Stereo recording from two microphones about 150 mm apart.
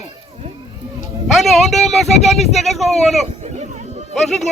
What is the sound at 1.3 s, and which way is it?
Speech, centre (ahead or behind).